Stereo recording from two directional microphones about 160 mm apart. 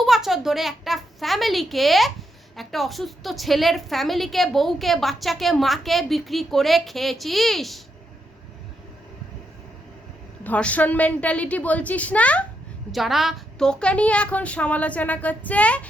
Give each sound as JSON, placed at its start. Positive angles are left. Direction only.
{"t": 0.0, "sound": "a woman's voice", "side_deg": 0}
{"t": 10.4, "sound": "a woman's voice", "side_deg": 10}